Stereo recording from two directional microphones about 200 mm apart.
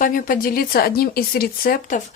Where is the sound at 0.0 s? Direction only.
45° left (ahead or behind).